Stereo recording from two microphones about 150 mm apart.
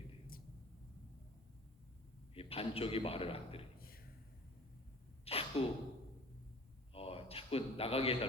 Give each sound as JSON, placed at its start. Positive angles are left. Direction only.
{"t": 2.3, "sound": "a man's voice", "side_deg": 40}
{"t": 5.2, "sound": "sneeze", "side_deg": 40}
{"t": 6.9, "sound": "a sound", "side_deg": 40}